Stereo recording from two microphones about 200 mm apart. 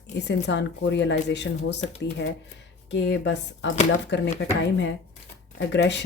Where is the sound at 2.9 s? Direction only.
60° left (ahead or behind).